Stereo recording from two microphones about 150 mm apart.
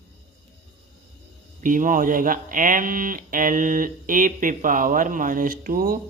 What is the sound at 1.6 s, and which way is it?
Speech, 60° right (ahead or behind).